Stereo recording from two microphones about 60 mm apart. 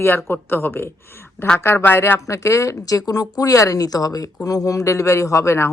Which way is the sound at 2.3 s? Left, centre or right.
Left.